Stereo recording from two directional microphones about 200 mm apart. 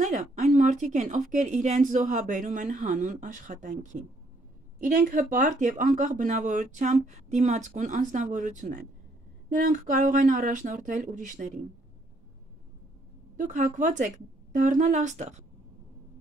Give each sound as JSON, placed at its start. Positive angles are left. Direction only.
{"t": 0.0, "sound": "speech", "side_deg": -40}
{"t": 13.4, "sound": "speech", "side_deg": -40}